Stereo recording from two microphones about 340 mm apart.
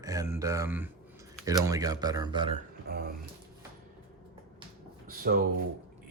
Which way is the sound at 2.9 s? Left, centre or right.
Right.